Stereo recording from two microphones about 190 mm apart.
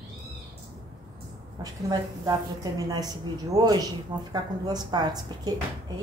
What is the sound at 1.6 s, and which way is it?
A woman's voice, 20° right (ahead or behind).